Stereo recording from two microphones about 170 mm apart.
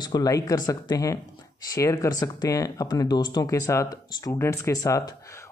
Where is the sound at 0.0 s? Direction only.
20° left (ahead or behind).